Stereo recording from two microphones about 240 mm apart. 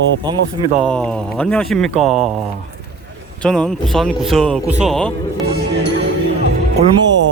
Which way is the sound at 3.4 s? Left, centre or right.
Centre.